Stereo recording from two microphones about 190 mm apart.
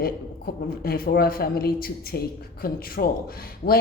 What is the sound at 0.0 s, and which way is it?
Speech, 55° left (ahead or behind).